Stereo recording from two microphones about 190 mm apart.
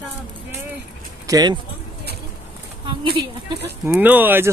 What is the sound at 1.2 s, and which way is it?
Speech, 20° right (ahead or behind).